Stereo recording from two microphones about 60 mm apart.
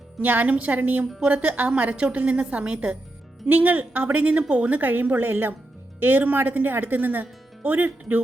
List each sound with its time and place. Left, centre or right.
0.2 s a woman's voice: right